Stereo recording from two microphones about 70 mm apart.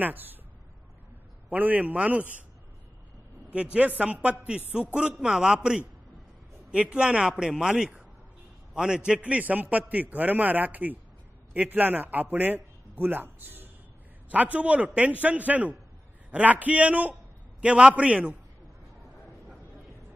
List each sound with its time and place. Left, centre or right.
0.0 s a man's voice: right
1.5 s a man's voice: right
3.5 s a man's voice: centre
5.1 s a man's voice: centre